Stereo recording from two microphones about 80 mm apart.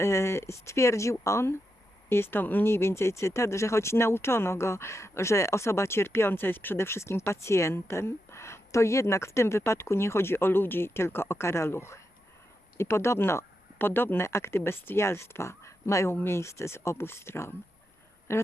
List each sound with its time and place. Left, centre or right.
0.0 s speech: left